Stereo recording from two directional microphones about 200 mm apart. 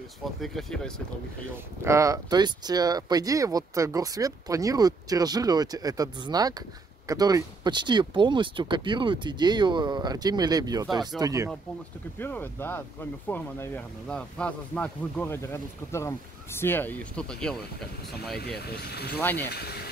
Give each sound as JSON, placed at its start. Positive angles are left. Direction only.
{"t": 0.2, "sound": "speech", "side_deg": 0}
{"t": 1.9, "sound": "speech", "side_deg": -15}
{"t": 12.2, "sound": "speech", "side_deg": 10}
{"t": 18.3, "sound": "speech", "side_deg": 55}